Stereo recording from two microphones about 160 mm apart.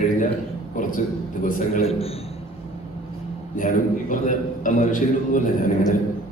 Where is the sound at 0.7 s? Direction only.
55° left (ahead or behind).